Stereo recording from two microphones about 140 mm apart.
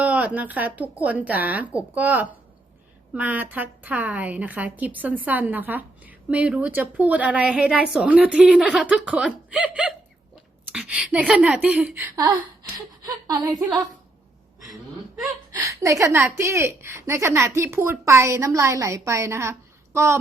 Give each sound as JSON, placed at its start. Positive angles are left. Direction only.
{"t": 0.0, "sound": "a woman's voice", "side_deg": -10}
{"t": 15.5, "sound": "a woman's voice", "side_deg": -20}